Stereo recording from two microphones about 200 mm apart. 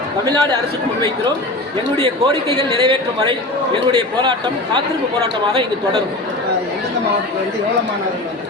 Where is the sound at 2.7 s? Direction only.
25° right (ahead or behind).